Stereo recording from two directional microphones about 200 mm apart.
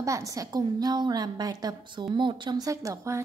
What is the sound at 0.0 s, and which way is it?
A woman's voice, 15° right (ahead or behind).